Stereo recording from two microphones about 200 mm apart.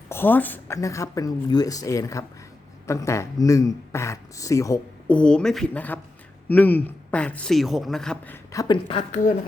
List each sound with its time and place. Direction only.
0.1 s a man's voice: 10° left (ahead or behind)
8.5 s speech: 20° left (ahead or behind)